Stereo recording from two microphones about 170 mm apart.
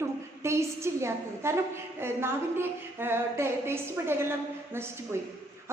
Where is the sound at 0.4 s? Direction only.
15° right (ahead or behind).